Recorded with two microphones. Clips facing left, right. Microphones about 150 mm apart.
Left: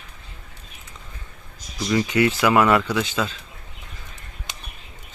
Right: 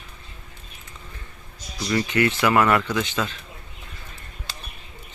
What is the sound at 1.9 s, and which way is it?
Speech, 15° left (ahead or behind).